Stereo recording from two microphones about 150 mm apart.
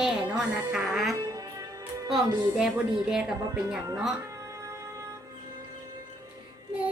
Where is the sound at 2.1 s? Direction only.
5° right (ahead or behind).